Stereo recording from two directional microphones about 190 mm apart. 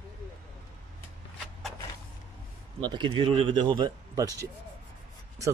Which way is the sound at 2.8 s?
25° right (ahead or behind).